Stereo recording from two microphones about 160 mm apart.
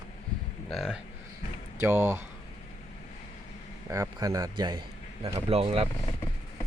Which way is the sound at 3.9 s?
20° right (ahead or behind).